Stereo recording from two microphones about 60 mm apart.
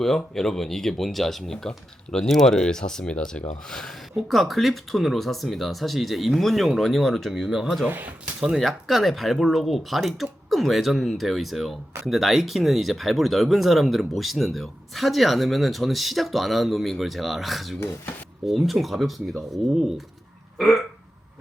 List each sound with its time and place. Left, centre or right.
0.0 s speech: centre
7.9 s speech: right
8.2 s speech: centre
20.6 s hiccup: centre